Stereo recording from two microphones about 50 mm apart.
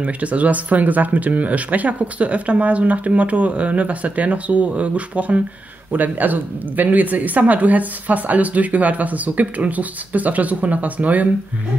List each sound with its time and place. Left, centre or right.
0.0 s speech: right